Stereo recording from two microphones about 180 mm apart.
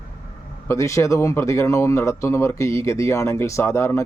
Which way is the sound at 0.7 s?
15° left (ahead or behind).